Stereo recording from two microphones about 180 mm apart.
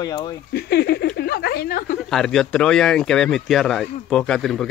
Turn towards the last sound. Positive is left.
turn(degrees=0)  # may be behind; listen again after turning